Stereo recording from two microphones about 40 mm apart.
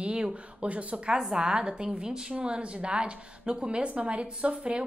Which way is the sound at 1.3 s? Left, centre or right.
Right.